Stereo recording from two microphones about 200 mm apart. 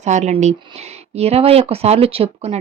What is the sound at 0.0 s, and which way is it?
Speech, 35° right (ahead or behind).